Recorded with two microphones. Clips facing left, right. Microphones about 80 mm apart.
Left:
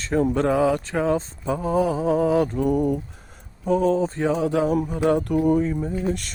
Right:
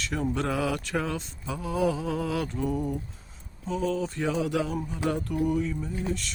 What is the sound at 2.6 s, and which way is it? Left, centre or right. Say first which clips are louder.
Speech: left 8 dB; left.